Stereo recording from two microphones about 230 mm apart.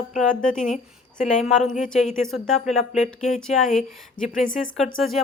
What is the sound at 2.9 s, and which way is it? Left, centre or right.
Speech, left.